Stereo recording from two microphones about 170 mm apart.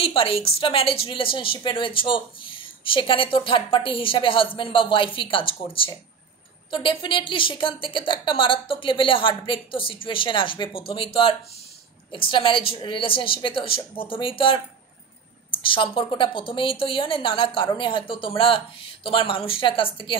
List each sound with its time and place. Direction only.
0.0 s a woman's voice: 30° left (ahead or behind)